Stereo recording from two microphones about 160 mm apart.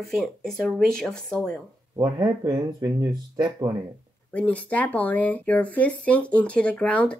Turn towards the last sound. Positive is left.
turn(degrees=10)  # may be behind; listen again after turning